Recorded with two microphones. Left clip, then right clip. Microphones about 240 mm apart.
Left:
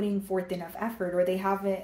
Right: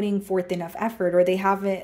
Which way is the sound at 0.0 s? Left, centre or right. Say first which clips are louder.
Right 5 dB; right.